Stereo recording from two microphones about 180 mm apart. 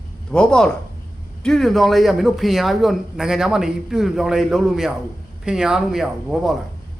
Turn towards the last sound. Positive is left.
turn(degrees=0)  # may be behind; listen again after turning